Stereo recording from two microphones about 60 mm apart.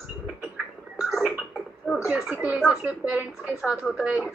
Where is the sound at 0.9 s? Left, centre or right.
Centre.